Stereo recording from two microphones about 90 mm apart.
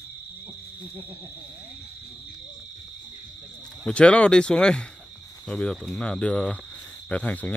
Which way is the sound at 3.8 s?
15° left (ahead or behind).